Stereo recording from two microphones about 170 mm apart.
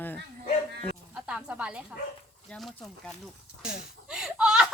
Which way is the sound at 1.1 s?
5° right (ahead or behind).